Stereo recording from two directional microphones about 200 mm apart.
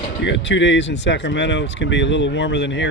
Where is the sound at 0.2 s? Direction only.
65° left (ahead or behind).